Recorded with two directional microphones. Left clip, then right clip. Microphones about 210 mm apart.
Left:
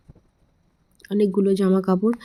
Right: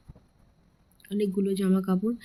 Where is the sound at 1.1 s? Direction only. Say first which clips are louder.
Left 8 dB; 25° left (ahead or behind).